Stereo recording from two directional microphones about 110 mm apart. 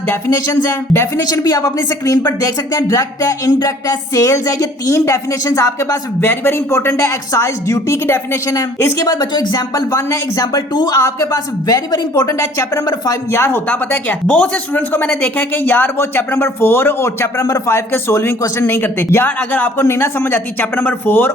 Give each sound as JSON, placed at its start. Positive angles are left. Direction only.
{"t": 0.1, "sound": "speech", "side_deg": 30}
{"t": 2.4, "sound": "music", "side_deg": 30}
{"t": 13.3, "sound": "speech", "side_deg": 20}